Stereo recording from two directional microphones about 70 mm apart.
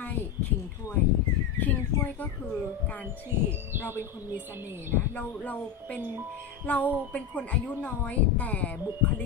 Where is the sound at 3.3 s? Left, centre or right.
Right.